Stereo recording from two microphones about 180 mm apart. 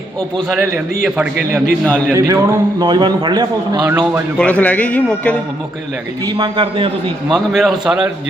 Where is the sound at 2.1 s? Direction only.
15° right (ahead or behind).